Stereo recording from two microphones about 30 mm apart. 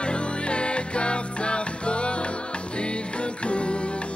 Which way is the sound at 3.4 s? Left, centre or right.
Left.